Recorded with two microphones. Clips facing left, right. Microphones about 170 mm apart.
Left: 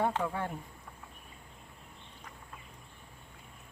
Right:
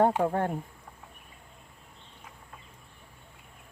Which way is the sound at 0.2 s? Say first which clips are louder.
Right 7 dB; 50° right (ahead or behind).